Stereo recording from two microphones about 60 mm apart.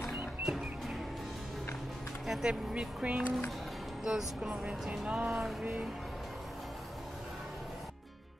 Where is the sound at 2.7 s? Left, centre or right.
Centre.